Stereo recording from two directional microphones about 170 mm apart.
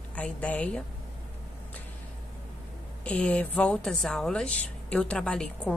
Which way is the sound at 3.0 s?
5° left (ahead or behind).